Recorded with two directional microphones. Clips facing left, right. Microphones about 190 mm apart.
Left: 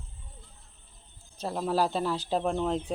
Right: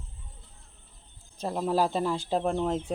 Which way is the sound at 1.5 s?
Centre (ahead or behind).